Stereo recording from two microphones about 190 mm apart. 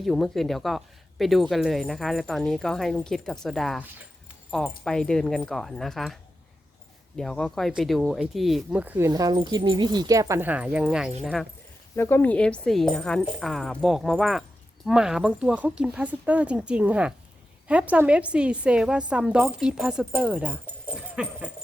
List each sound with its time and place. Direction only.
0.0 s a woman's voice: centre (ahead or behind)
7.2 s a woman's voice: 5° left (ahead or behind)
11.9 s a woman's voice: 10° left (ahead or behind); by 21.5 s 5° right (ahead or behind)